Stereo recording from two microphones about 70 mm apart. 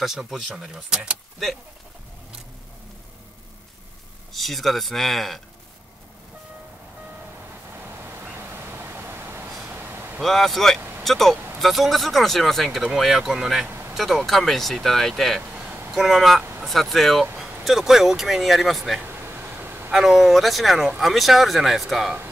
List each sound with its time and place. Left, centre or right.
0.0 s speech: centre
0.7 s speech: centre
4.3 s speech: centre
7.8 s a sound: right
10.2 s speech: centre
10.8 s vehicle: right
11.1 s speech: centre
13.7 s a sound: right
13.9 s speech: centre
15.5 s a sound: right
15.9 s speech: centre
19.0 s a sound: right
19.9 s speech: centre